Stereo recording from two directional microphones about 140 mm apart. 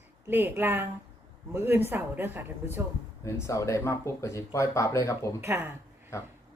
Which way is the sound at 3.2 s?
20° left (ahead or behind).